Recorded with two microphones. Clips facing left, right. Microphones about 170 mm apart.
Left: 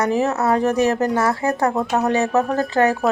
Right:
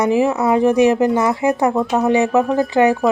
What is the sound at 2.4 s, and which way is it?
Speech, centre (ahead or behind).